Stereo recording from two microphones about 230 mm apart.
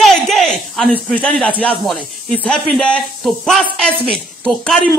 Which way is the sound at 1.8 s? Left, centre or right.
Centre.